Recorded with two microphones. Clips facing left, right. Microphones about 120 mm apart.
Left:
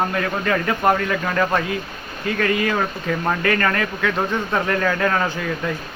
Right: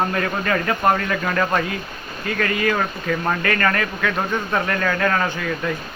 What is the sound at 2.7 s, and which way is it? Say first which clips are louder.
Speech: even; 5° left (ahead or behind).